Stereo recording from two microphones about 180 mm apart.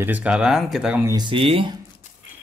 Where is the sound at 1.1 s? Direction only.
25° right (ahead or behind).